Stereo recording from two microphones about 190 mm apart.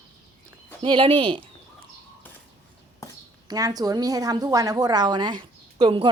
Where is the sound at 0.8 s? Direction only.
30° right (ahead or behind).